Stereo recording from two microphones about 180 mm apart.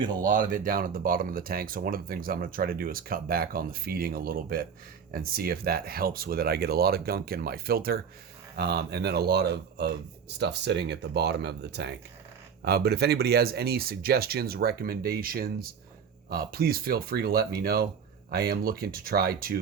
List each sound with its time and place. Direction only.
0.0 s speech: 25° right (ahead or behind)
0.3 s speech: 50° right (ahead or behind)